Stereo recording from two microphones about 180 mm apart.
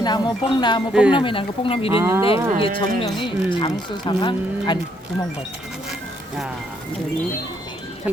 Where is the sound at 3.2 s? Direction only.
25° left (ahead or behind).